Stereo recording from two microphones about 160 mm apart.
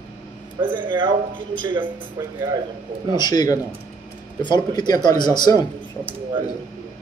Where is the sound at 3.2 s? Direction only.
25° left (ahead or behind).